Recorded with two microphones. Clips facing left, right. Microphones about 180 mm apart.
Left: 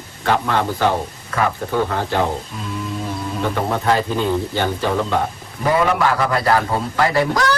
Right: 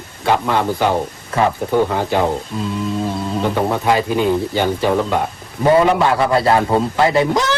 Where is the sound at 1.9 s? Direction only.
15° right (ahead or behind).